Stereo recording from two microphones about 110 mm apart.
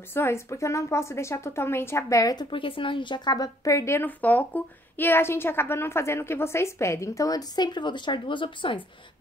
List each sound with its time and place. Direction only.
0.1 s a woman's voice: 20° left (ahead or behind)
2.5 s a woman's voice: 50° left (ahead or behind)